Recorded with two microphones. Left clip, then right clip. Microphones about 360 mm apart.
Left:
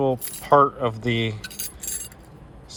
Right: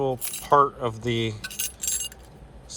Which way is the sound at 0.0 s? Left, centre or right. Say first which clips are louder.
Left 4 dB; centre.